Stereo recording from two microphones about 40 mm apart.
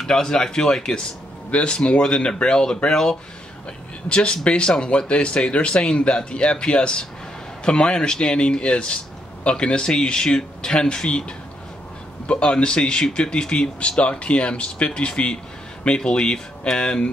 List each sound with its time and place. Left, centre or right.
0.0 s speech: centre
4.1 s speech: left